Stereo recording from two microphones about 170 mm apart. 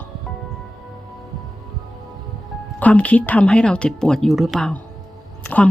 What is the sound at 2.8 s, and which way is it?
Speech, 10° left (ahead or behind).